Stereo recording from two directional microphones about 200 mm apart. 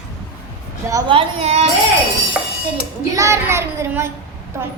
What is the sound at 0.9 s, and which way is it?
Speech, 20° right (ahead or behind).